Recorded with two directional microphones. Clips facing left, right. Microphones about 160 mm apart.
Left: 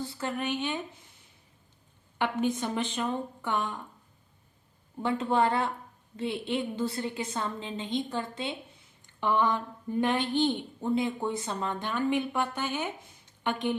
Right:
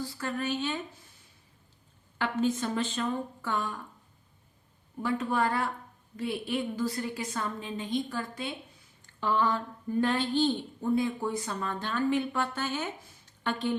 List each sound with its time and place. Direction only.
0.0 s speech: 25° left (ahead or behind)
2.1 s a woman's voice: 15° left (ahead or behind)
5.0 s a woman's voice: 25° left (ahead or behind)